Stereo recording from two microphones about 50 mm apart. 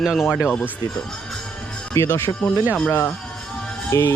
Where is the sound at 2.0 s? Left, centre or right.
Left.